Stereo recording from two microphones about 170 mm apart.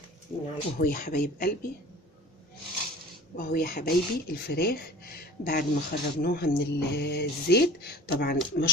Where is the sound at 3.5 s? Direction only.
60° left (ahead or behind).